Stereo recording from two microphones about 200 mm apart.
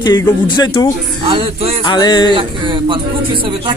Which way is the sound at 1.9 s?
20° left (ahead or behind).